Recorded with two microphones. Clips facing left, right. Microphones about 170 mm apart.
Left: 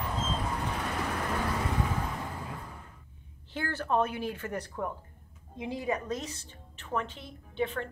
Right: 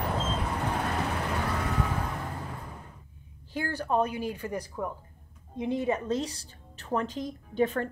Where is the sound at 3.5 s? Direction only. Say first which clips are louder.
Right 1 dB; 10° right (ahead or behind).